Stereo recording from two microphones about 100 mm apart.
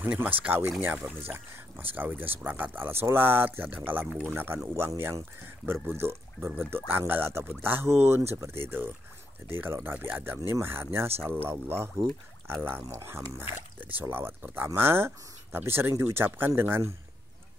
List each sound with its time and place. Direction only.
0.0 s speech: 15° right (ahead or behind)